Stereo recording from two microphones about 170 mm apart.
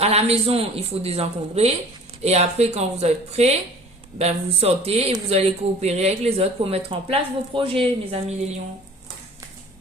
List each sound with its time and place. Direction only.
0.0 s speech: 40° right (ahead or behind)